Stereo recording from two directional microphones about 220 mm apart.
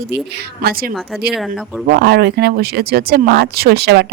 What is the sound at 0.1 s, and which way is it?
Speech, 45° right (ahead or behind).